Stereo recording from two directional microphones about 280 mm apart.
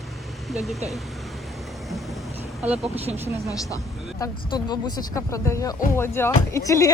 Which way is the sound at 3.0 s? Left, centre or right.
Right.